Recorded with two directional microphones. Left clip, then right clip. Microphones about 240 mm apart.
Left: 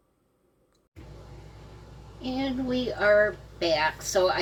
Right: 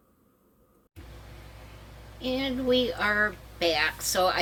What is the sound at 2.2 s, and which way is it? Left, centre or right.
A woman's voice, right.